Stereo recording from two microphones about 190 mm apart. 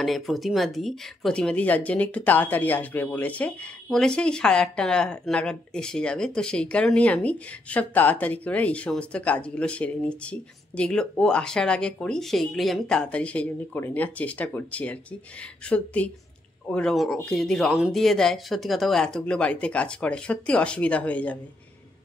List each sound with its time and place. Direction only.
0.0 s speech: centre (ahead or behind)